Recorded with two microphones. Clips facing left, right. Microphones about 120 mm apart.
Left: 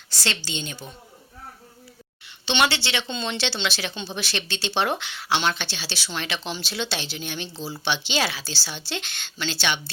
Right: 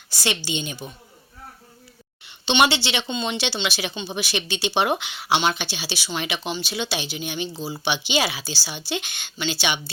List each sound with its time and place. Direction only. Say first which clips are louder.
0.1 s speech: right 4 dB; 15° right (ahead or behind)
2.2 s speech: right 3 dB; 15° right (ahead or behind)